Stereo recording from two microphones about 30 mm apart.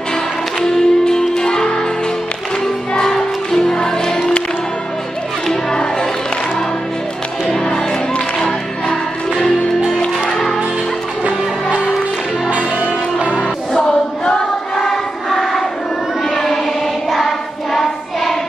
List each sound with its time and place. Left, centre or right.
0.7 s music: centre
3.1 s music: centre
5.5 s music: left
7.6 s music: left
12.4 s music: right
13.4 s choir: left
16.3 s child singing: centre